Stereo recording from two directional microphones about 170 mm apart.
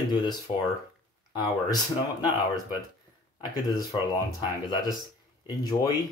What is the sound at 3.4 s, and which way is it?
Speech, 25° left (ahead or behind).